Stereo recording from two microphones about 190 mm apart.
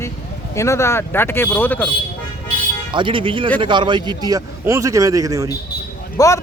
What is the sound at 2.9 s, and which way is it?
A man's voice, 25° right (ahead or behind).